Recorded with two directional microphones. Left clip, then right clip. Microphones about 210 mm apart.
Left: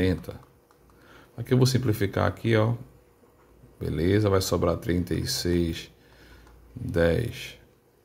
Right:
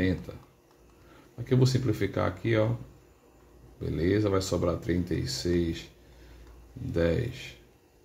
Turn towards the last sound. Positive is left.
turn(degrees=35)  # may be behind; listen again after turning